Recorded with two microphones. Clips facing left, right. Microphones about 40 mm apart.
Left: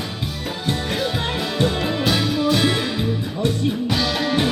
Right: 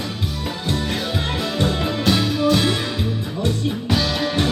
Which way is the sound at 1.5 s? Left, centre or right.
Centre.